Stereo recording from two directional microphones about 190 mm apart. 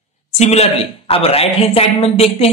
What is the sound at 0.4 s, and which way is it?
A man's voice, 35° left (ahead or behind).